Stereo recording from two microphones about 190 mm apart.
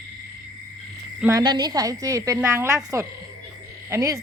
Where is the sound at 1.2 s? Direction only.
20° right (ahead or behind).